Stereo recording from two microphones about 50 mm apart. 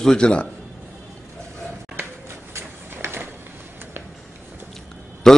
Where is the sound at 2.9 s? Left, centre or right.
Right.